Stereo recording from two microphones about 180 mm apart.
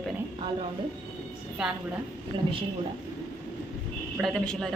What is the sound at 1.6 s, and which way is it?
Speech, 5° right (ahead or behind).